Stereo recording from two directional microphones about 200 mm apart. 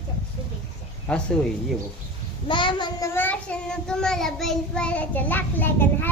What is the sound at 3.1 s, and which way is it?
Child singing, 10° left (ahead or behind).